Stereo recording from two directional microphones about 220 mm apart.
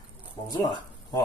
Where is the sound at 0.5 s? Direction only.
20° left (ahead or behind).